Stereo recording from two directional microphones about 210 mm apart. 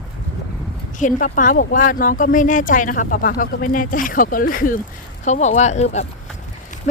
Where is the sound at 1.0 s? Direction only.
40° left (ahead or behind).